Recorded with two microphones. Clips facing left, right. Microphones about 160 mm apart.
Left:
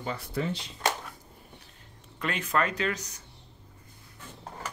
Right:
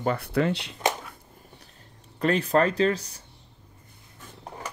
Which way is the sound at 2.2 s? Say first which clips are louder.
Right 7 dB; 35° right (ahead or behind).